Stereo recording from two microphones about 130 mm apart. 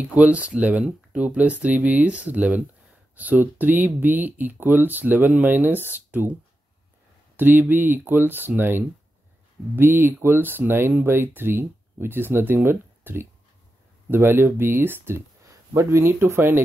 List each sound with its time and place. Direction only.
0.0 s speech: 10° right (ahead or behind)
7.3 s speech: 15° right (ahead or behind)